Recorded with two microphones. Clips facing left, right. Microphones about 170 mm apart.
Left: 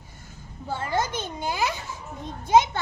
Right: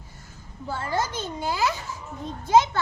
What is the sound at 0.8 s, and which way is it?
A child's voice, 20° left (ahead or behind).